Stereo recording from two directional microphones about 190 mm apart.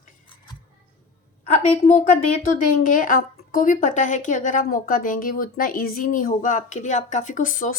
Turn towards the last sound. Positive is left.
turn(degrees=45)  # may be behind; listen again after turning